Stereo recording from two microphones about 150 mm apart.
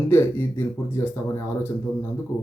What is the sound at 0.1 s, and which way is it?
Speech, 15° left (ahead or behind).